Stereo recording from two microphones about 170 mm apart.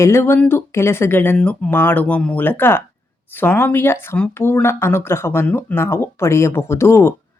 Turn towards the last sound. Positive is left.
turn(degrees=15)  # may be behind; listen again after turning